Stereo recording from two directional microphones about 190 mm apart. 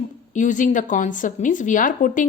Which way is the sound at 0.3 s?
40° left (ahead or behind).